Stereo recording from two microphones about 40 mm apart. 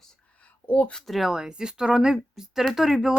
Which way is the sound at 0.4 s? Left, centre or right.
Left.